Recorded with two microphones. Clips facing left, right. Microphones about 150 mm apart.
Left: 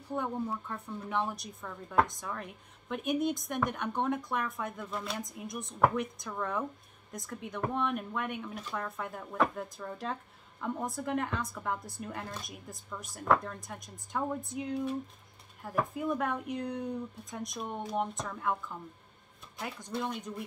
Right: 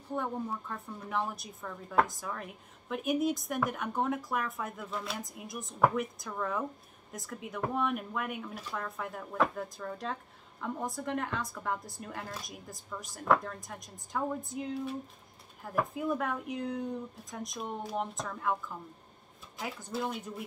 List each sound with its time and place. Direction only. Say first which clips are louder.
0.1 s a woman's voice: left 1 dB; centre (ahead or behind)
19.6 s a woman's voice: right 1 dB; centre (ahead or behind)